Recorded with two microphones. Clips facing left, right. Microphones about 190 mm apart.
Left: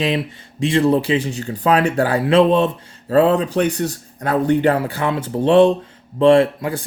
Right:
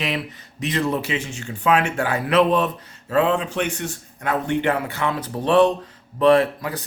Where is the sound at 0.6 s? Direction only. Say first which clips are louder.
Left 7 dB; 30° left (ahead or behind).